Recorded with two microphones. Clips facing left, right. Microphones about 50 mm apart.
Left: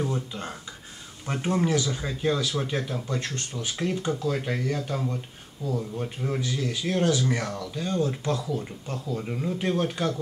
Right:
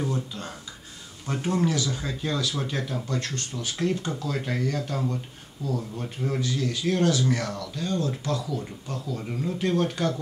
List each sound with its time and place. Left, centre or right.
0.1 s speech: left